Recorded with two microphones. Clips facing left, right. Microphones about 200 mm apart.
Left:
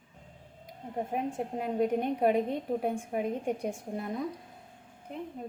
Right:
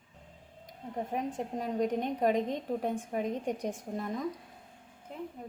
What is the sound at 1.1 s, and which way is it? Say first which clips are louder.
A woman's voice: left 1 dB; 5° left (ahead or behind).